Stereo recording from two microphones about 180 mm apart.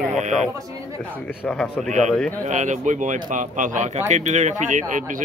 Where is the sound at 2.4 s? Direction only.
40° right (ahead or behind).